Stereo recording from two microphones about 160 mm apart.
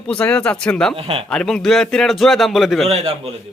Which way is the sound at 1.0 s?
35° right (ahead or behind).